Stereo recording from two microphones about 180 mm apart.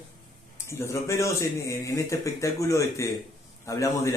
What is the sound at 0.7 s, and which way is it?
A man's voice, 15° left (ahead or behind).